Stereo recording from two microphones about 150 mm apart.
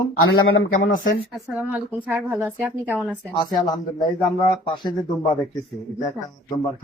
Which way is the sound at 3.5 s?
30° left (ahead or behind).